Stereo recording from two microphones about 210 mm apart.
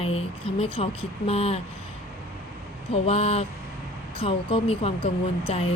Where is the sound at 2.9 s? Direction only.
30° left (ahead or behind).